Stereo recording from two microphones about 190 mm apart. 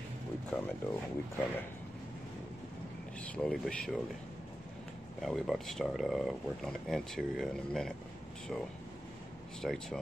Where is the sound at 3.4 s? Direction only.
5° left (ahead or behind).